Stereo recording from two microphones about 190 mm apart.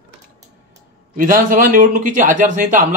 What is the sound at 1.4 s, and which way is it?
Speech, 45° right (ahead or behind).